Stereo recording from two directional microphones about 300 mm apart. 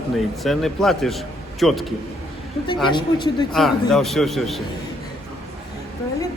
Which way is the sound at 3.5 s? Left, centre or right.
Centre.